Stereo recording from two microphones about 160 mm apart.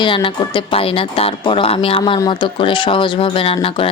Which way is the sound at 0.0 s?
30° left (ahead or behind).